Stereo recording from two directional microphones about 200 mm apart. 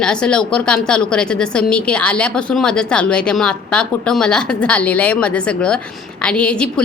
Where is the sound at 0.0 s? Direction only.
5° left (ahead or behind).